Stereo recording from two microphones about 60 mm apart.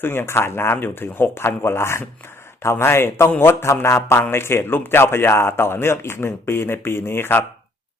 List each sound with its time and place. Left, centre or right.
0.0 s a man's voice: left